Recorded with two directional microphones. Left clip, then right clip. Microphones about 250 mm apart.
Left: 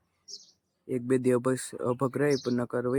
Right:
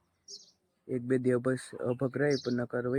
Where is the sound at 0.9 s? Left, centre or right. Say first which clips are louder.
Left 3 dB; centre.